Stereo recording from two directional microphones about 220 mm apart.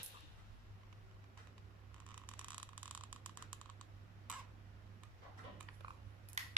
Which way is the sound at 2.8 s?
10° left (ahead or behind).